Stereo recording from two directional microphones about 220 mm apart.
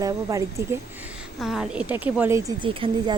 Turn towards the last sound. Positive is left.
turn(degrees=-20)  # may be behind; listen again after turning